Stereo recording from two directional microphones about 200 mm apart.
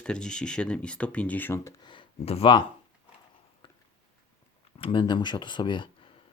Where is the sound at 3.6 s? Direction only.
25° left (ahead or behind).